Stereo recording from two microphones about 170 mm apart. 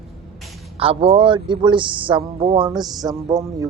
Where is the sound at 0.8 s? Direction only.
35° right (ahead or behind); by 3.7 s 20° right (ahead or behind).